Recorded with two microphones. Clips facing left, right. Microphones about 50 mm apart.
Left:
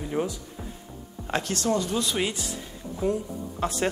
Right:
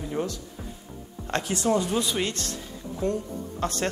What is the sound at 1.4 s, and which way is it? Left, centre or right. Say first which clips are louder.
Speech: right 3 dB; centre.